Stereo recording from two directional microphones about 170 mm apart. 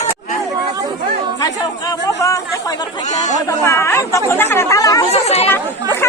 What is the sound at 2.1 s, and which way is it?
Chatter, 20° left (ahead or behind).